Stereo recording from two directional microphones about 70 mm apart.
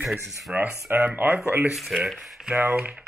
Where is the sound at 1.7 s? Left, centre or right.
Centre.